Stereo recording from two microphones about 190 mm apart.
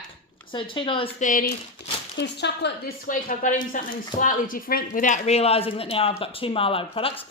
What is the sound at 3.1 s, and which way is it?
Speech, 45° left (ahead or behind).